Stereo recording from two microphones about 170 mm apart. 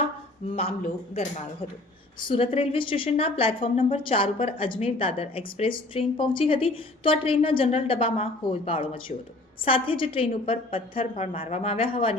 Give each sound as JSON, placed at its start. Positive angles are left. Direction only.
{"t": 0.5, "sound": "a woman's voice", "side_deg": 35}
{"t": 2.2, "sound": "a woman's voice", "side_deg": 30}